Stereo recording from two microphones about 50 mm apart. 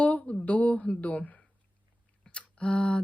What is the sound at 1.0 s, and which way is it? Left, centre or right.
Speech, left.